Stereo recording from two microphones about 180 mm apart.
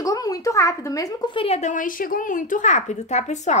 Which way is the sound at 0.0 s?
20° left (ahead or behind).